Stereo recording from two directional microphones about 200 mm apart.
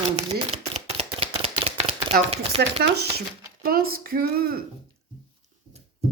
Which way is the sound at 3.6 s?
50° right (ahead or behind).